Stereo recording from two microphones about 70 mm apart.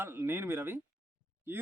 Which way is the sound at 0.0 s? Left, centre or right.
Right.